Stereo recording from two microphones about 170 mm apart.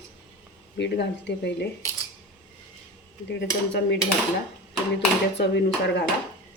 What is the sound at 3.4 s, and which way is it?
Speech, 90° left.